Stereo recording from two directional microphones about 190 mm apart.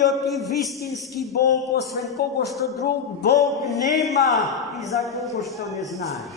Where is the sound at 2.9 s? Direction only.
60° left (ahead or behind).